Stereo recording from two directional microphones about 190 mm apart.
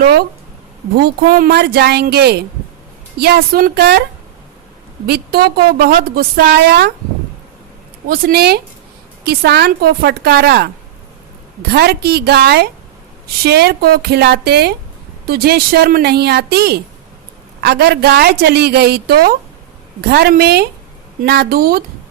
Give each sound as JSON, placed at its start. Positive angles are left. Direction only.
{"t": 0.0, "sound": "a woman's voice", "side_deg": -55}
{"t": 5.0, "sound": "a woman's voice", "side_deg": -55}
{"t": 8.0, "sound": "a woman's voice", "side_deg": -55}
{"t": 11.7, "sound": "a woman's voice", "side_deg": -55}